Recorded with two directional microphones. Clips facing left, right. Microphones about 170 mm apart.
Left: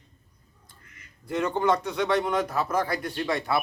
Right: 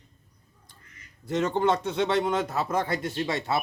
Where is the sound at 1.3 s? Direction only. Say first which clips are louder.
Even; 25° right (ahead or behind).